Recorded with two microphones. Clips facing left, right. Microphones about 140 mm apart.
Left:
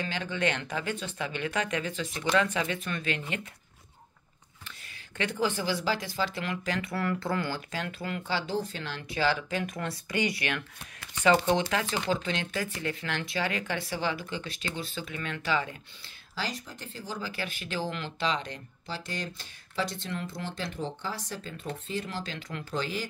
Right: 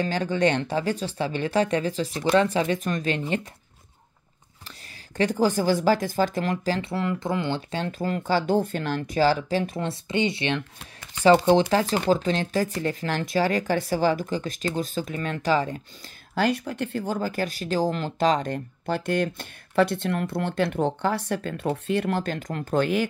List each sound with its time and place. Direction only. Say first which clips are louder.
0.0 s speech: right 8 dB; 40° right (ahead or behind)
4.6 s speech: right 3 dB; 35° right (ahead or behind)
11.9 s speech: right 8 dB; 45° right (ahead or behind)
16.3 s speech: right 12 dB; 60° right (ahead or behind)